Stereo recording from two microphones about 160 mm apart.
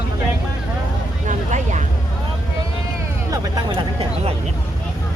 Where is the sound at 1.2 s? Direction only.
50° right (ahead or behind).